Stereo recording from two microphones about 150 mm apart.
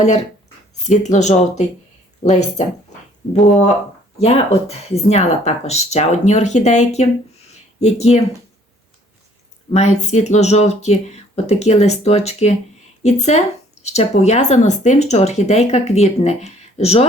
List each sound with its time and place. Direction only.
0.9 s speech: 55° left (ahead or behind)
4.2 s speech: 45° left (ahead or behind)
9.7 s speech: 50° left (ahead or behind)